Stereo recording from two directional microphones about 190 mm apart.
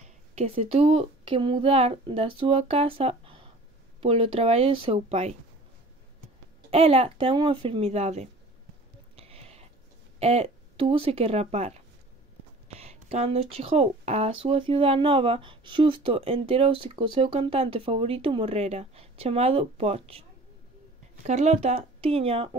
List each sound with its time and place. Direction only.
0.0 s speech: 35° right (ahead or behind)
6.7 s speech: 30° right (ahead or behind)
9.1 s a sound: 30° right (ahead or behind)
10.1 s speech: 35° right (ahead or behind)
21.3 s speech: 35° right (ahead or behind)